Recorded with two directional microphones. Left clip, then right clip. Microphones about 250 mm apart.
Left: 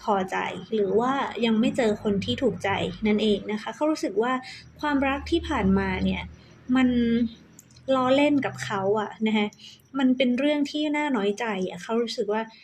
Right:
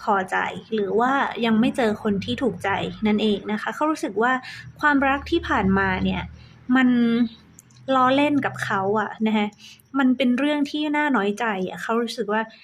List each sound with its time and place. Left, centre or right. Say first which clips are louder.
0.0 s a woman's voice: right 4 dB; centre